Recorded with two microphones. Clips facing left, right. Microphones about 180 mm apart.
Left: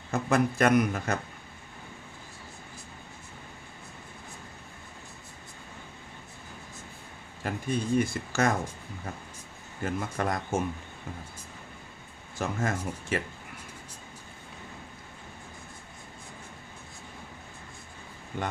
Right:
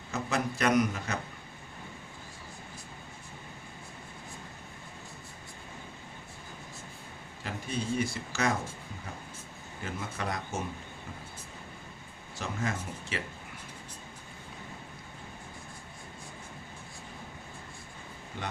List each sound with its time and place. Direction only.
0.1 s a man's voice: 50° left (ahead or behind)
7.4 s speech: 50° left (ahead or behind)
9.8 s a man's voice: 50° left (ahead or behind)
12.4 s a man's voice: 50° left (ahead or behind)
18.3 s a man's voice: 50° left (ahead or behind)